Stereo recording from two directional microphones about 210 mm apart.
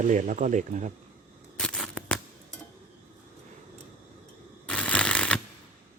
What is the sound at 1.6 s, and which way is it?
Scissors, 5° left (ahead or behind).